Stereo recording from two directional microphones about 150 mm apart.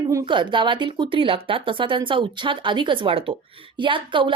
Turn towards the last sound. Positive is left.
turn(degrees=-35)  # may be behind; listen again after turning